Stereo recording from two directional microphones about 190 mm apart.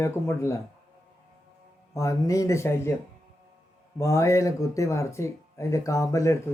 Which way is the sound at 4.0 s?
15° left (ahead or behind).